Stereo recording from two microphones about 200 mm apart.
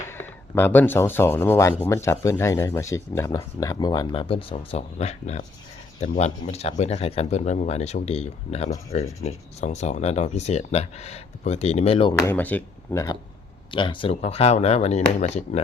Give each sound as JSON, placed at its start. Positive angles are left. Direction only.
{"t": 0.1, "sound": "speech", "side_deg": 10}
{"t": 12.1, "sound": "speech", "side_deg": 10}